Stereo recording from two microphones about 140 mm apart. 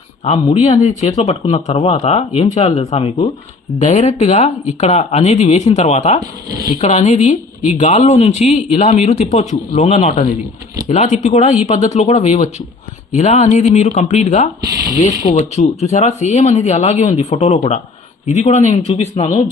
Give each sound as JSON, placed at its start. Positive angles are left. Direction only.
{"t": 0.3, "sound": "speech", "side_deg": 55}
{"t": 14.6, "sound": "speech", "side_deg": -25}
{"t": 15.3, "sound": "speech", "side_deg": 55}